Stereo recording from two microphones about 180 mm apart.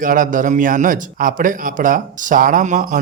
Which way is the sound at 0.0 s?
50° right (ahead or behind).